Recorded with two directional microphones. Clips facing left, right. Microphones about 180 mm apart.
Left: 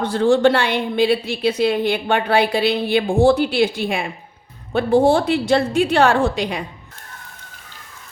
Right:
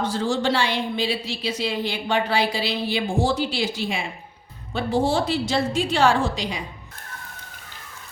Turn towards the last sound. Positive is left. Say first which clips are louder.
# left 5 dB
turn(degrees=60)  # may be behind; listen again after turning